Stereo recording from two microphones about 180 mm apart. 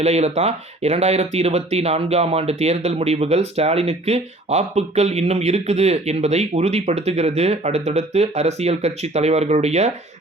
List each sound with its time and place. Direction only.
0.0 s speech: 35° right (ahead or behind)